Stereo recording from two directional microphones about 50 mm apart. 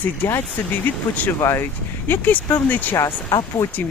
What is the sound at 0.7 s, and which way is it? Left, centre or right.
Speech, left.